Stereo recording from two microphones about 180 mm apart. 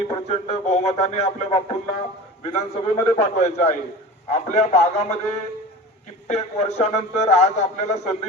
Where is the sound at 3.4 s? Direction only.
40° left (ahead or behind).